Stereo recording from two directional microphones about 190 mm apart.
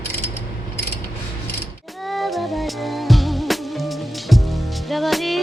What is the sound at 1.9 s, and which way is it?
Music, centre (ahead or behind).